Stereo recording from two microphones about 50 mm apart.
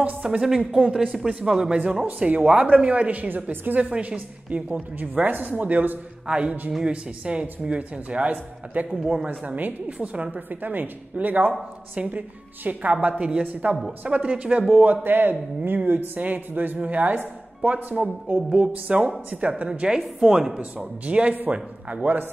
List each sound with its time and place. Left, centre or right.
0.4 s a woman's voice: centre; by 5.9 s right
6.2 s a woman's voice: centre
8.9 s speech: centre
9.3 s a woman's voice: right
10.5 s a woman's voice: right
13.2 s a woman's voice: right
13.5 s a woman's voice: right; by 20.6 s centre
20.7 s a woman's voice: right